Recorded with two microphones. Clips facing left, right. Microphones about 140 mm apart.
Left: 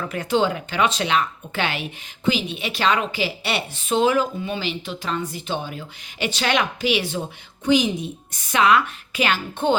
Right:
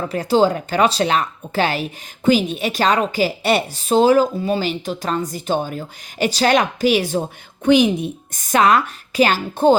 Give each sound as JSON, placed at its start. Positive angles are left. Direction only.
{"t": 0.0, "sound": "speech", "side_deg": -35}
{"t": 7.6, "sound": "a woman's voice", "side_deg": -60}